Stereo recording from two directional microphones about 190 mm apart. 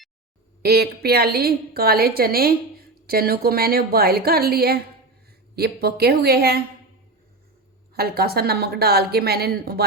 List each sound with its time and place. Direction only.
0.6 s a woman's voice: 55° right (ahead or behind)
7.9 s a woman's voice: 55° right (ahead or behind)